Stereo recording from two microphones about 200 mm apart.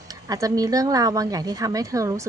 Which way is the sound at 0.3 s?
15° right (ahead or behind).